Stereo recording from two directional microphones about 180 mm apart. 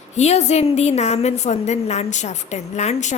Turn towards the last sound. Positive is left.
turn(degrees=40)  # may be behind; listen again after turning